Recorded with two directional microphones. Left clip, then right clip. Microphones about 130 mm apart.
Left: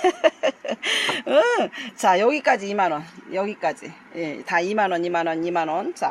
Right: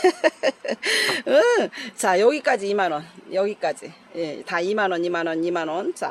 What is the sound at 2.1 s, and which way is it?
Speech, 10° right (ahead or behind).